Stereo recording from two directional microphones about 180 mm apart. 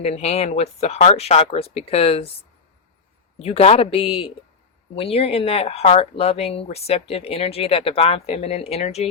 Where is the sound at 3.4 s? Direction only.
35° left (ahead or behind).